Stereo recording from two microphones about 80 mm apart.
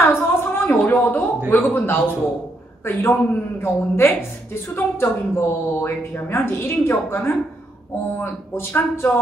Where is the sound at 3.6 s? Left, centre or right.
Left.